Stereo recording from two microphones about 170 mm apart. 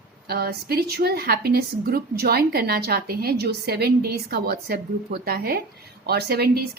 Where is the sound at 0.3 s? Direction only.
65° right (ahead or behind).